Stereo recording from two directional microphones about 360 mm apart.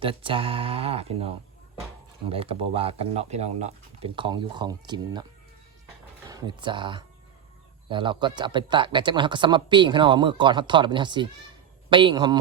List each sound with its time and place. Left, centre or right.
0.0 s speech: centre
2.3 s speech: centre
6.2 s speech: centre